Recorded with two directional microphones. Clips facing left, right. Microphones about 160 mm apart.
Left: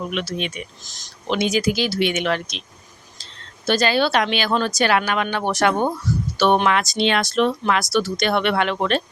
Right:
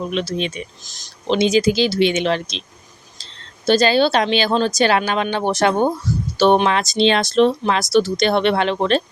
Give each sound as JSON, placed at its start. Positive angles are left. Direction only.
{"t": 0.1, "sound": "speech", "side_deg": -30}
{"t": 3.7, "sound": "speech", "side_deg": -25}